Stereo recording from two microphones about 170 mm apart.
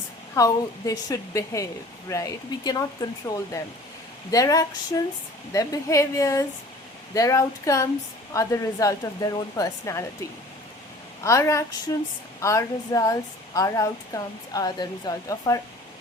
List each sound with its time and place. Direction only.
0.3 s speech: 20° left (ahead or behind)
11.2 s a woman's voice: 15° left (ahead or behind)